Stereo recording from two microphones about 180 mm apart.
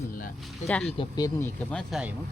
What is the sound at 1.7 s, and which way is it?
Speech, centre (ahead or behind).